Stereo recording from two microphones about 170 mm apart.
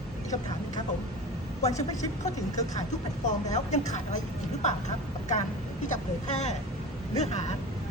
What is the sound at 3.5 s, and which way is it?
Speech, 45° left (ahead or behind).